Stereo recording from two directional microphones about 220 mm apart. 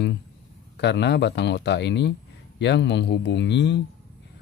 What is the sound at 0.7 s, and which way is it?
Speech, 50° left (ahead or behind).